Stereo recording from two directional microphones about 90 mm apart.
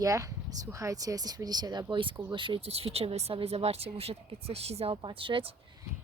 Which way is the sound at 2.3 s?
70° right (ahead or behind).